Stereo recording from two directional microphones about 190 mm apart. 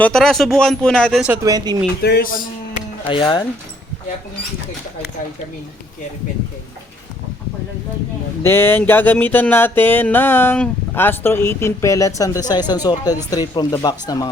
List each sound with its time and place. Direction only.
0.0 s speech: 5° left (ahead or behind)
1.3 s speech: 15° right (ahead or behind)
2.0 s speech: 55° left (ahead or behind)
3.1 s speech: 25° left (ahead or behind)
8.4 s music: 10° left (ahead or behind)